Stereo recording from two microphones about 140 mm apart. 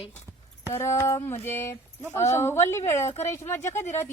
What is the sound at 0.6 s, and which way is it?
A woman's voice, 20° left (ahead or behind).